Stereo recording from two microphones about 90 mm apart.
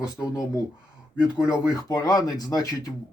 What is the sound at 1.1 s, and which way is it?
Speech, 10° right (ahead or behind).